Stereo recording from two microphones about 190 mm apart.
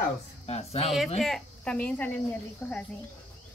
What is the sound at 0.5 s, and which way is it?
Speech, 35° left (ahead or behind).